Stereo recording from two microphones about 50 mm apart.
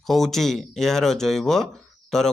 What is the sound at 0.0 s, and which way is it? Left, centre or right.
Speech, centre.